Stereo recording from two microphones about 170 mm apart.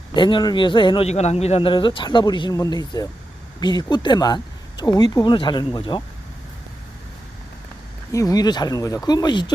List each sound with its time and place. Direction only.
0.1 s a man's voice: 30° left (ahead or behind)
8.1 s a man's voice: 20° left (ahead or behind)